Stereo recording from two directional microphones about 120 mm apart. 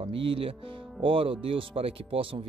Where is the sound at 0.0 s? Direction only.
50° right (ahead or behind).